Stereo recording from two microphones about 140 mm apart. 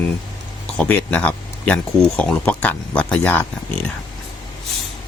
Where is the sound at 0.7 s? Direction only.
10° left (ahead or behind).